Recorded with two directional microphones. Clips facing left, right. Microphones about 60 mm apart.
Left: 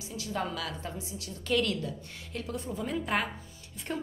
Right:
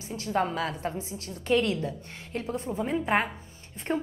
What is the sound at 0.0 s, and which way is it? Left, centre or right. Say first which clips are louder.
A woman's voice: right 6 dB; right.